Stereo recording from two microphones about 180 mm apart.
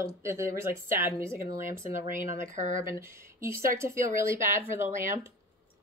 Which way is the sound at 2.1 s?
40° right (ahead or behind).